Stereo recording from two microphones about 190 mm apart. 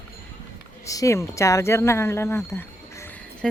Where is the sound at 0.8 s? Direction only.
15° left (ahead or behind).